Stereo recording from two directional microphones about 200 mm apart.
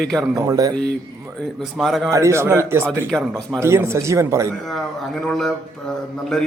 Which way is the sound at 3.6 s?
15° right (ahead or behind).